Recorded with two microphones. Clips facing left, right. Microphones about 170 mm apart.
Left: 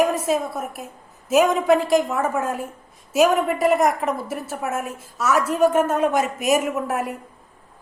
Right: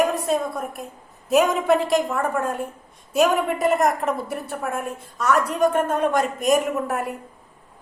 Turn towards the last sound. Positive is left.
turn(degrees=0)  # may be behind; listen again after turning